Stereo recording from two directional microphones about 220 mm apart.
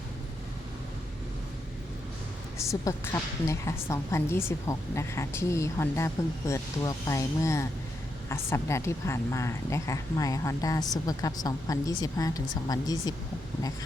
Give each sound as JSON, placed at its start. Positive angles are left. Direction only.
{"t": 2.8, "sound": "a woman's voice", "side_deg": 10}